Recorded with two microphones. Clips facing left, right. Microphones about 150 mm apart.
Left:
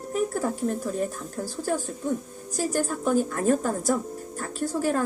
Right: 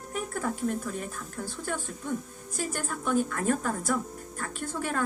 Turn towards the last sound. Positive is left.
turn(degrees=35)  # may be behind; listen again after turning